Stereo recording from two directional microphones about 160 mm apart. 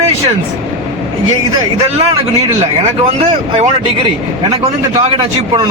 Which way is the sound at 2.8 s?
40° right (ahead or behind).